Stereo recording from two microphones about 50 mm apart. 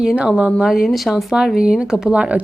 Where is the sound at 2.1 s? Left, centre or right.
Right.